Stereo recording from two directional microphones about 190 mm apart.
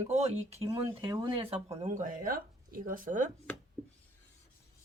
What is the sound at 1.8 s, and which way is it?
Speech, 40° right (ahead or behind).